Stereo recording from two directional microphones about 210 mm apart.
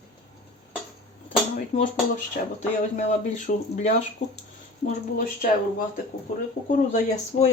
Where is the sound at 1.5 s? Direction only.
40° left (ahead or behind).